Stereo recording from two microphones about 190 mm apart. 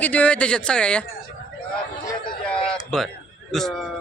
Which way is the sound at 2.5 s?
5° left (ahead or behind).